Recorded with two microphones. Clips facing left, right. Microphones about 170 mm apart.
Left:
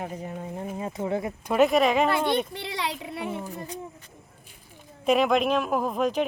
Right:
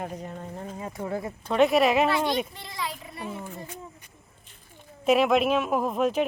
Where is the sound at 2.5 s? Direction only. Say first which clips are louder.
Left 4 dB; 70° left (ahead or behind).